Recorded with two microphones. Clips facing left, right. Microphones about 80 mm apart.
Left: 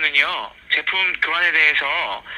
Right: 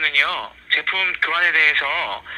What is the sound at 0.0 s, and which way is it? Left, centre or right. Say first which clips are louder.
Speech: even; right.